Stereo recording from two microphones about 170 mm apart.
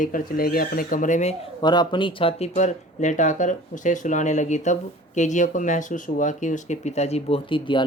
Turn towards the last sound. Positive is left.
turn(degrees=30)  # may be behind; listen again after turning